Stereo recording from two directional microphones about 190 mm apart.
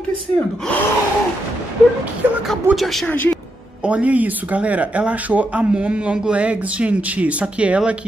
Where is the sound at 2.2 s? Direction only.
10° right (ahead or behind).